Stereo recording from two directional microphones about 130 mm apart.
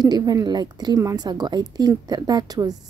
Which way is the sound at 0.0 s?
30° right (ahead or behind).